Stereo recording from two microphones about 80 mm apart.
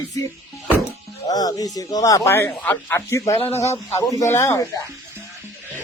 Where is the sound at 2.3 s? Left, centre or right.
Left.